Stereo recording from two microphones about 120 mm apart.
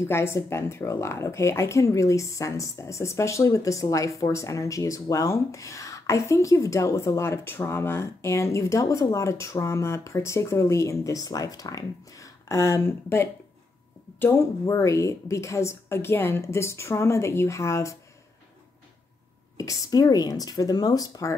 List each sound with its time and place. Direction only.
0.1 s speech: 20° left (ahead or behind)
19.5 s speech: 30° left (ahead or behind)